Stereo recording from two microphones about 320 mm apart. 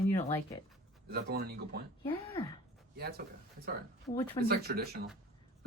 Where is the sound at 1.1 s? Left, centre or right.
Right.